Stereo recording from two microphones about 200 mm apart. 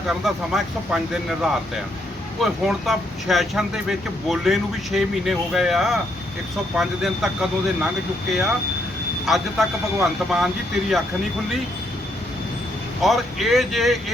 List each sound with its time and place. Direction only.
0.1 s speech: centre (ahead or behind)
9.2 s speech: centre (ahead or behind)
13.0 s speech: centre (ahead or behind)